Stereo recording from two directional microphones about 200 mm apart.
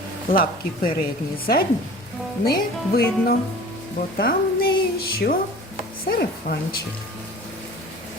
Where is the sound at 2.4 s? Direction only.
50° left (ahead or behind).